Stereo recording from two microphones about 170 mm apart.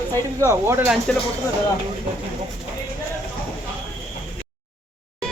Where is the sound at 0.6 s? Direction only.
15° right (ahead or behind).